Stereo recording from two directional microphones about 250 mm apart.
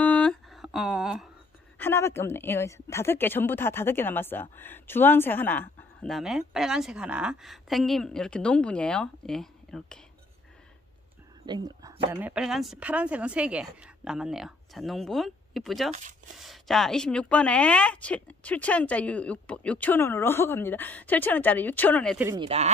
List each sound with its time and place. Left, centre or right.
0.0 s a sound: centre
1.8 s a woman's voice: centre
11.4 s a woman's voice: centre
15.9 s speech: right
16.3 s a woman's voice: centre
22.2 s speech: centre